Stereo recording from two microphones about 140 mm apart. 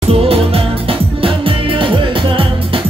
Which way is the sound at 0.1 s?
45° right (ahead or behind).